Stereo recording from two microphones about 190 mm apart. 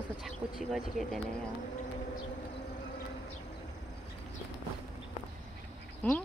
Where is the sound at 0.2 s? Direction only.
Centre (ahead or behind).